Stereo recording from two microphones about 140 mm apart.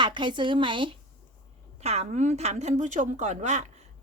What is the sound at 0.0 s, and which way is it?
Speech, 35° right (ahead or behind).